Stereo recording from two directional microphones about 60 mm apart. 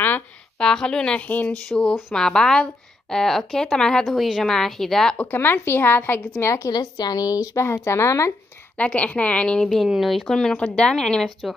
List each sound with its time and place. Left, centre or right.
0.6 s a woman's voice: centre
4.0 s speech: centre
5.1 s a woman's voice: left
6.4 s a woman's voice: left
7.5 s speech: left
8.7 s a woman's voice: left
9.8 s speech: centre
10.2 s a woman's voice: centre